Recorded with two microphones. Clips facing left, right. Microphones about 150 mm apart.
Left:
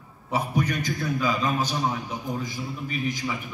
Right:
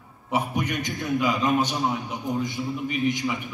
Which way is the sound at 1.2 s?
15° right (ahead or behind).